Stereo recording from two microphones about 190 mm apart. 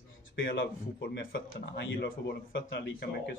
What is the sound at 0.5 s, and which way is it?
Speech, 75° left (ahead or behind).